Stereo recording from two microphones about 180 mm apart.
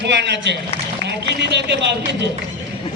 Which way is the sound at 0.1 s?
75° right (ahead or behind).